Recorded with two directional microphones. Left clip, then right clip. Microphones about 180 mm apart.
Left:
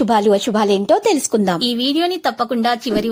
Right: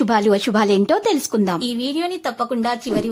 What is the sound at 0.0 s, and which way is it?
Speech, centre (ahead or behind).